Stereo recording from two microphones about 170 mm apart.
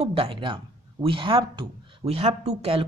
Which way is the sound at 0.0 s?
30° right (ahead or behind).